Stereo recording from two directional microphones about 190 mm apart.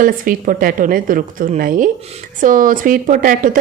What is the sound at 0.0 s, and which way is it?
A woman's voice, 45° right (ahead or behind).